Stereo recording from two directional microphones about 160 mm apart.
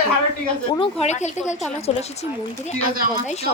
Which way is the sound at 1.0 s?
45° left (ahead or behind).